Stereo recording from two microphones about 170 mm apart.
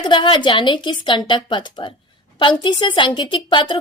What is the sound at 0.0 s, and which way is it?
A woman's voice, 30° left (ahead or behind).